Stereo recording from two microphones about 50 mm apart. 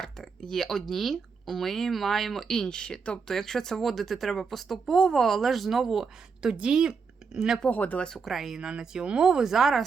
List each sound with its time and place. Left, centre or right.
0.0 s speech: centre
7.7 s speech: left
8.2 s speech: centre
8.5 s speech: centre